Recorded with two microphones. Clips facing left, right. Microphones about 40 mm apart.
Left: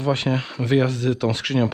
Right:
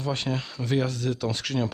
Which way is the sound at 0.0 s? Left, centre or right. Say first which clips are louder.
Left 7 dB; left.